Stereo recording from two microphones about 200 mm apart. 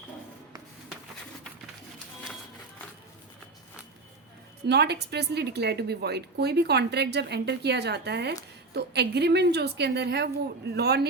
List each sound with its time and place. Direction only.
4.6 s a woman's voice: 55° right (ahead or behind)